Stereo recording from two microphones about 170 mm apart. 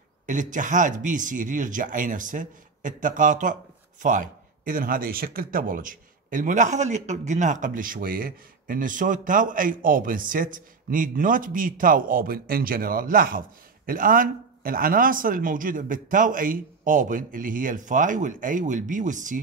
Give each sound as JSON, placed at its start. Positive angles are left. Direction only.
{"t": 0.3, "sound": "speech", "side_deg": -50}